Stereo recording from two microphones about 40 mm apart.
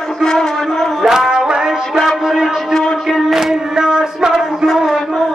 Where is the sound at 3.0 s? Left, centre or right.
Centre.